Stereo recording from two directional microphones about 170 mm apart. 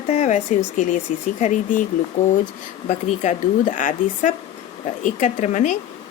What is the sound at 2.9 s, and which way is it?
A woman's voice, 45° left (ahead or behind).